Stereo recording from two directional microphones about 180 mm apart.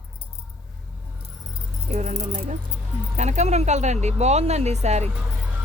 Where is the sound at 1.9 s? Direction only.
40° right (ahead or behind).